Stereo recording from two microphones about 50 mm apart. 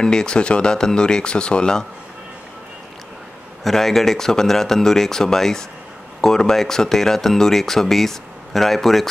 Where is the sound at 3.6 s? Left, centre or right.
Centre.